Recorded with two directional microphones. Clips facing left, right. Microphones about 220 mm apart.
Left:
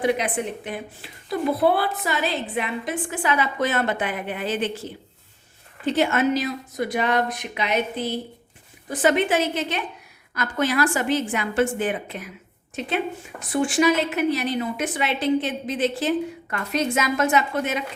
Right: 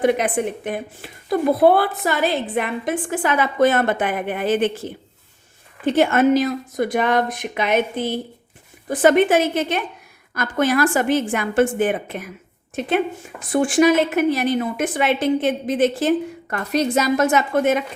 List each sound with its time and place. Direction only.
0.0 s a woman's voice: 50° right (ahead or behind)